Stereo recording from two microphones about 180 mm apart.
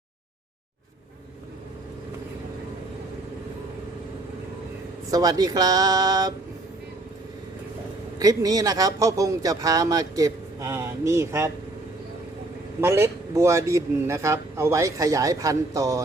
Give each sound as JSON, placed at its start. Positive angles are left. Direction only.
{"t": 5.1, "sound": "speech", "side_deg": -20}
{"t": 8.2, "sound": "speech", "side_deg": -20}
{"t": 12.8, "sound": "a man's voice", "side_deg": -15}